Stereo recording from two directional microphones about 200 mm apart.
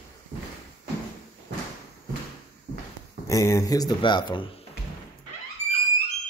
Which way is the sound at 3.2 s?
15° left (ahead or behind).